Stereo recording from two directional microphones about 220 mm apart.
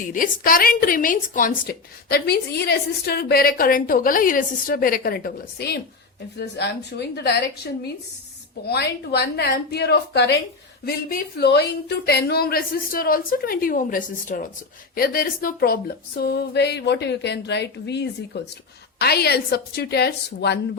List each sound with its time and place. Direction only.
0.0 s a woman's voice: 40° left (ahead or behind)